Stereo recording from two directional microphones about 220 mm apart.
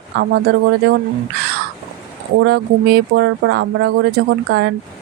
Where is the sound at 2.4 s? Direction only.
45° right (ahead or behind).